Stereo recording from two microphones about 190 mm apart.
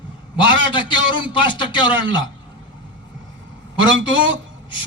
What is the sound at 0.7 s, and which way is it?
A man's voice, 25° left (ahead or behind).